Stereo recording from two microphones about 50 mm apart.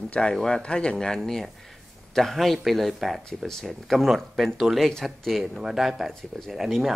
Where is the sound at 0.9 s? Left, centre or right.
Centre.